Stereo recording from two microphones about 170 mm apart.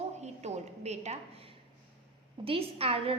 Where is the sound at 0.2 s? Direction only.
40° right (ahead or behind).